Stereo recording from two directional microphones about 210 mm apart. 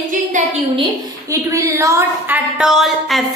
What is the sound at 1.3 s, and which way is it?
A woman's voice, 15° right (ahead or behind).